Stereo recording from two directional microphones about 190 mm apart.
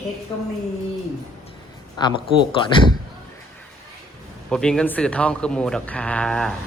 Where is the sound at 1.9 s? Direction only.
25° left (ahead or behind).